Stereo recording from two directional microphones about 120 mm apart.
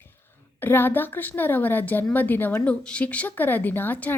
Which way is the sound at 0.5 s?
15° left (ahead or behind).